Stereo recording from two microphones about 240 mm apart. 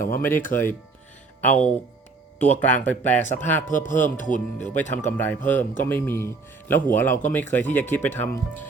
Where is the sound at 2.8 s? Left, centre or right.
Centre.